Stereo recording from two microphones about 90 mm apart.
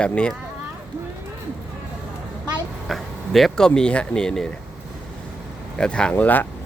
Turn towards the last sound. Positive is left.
turn(degrees=20)  # may be behind; listen again after turning